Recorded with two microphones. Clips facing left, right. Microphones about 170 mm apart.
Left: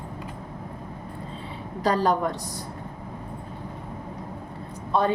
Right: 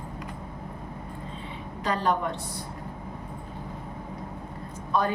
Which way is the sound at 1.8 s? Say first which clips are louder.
Left 4 dB; 35° left (ahead or behind).